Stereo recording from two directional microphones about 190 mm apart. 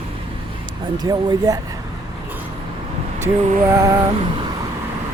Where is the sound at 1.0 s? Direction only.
20° right (ahead or behind).